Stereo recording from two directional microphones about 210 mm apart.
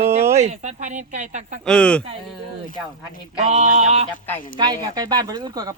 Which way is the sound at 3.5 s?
30° right (ahead or behind).